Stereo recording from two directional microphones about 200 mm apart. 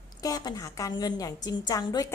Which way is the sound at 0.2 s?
20° left (ahead or behind).